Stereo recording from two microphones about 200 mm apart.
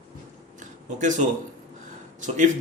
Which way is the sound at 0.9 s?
40° right (ahead or behind).